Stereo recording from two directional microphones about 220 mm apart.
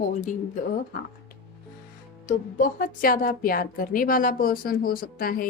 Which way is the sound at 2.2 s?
40° left (ahead or behind).